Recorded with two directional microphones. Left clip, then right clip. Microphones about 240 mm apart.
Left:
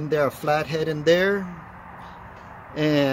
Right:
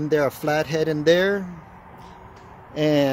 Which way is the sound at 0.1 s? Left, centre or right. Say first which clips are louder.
Even; centre.